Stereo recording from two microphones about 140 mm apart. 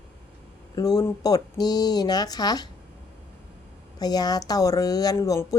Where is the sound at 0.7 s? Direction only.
25° left (ahead or behind).